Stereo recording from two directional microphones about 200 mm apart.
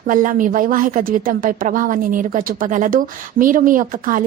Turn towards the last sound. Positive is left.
turn(degrees=-45)  # may be behind; listen again after turning